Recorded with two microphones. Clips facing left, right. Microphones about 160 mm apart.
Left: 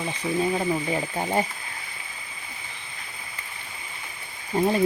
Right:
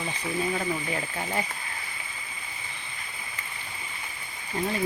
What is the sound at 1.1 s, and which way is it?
Speech, 30° left (ahead or behind).